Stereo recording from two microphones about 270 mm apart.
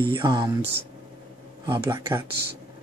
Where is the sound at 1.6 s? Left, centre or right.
Centre.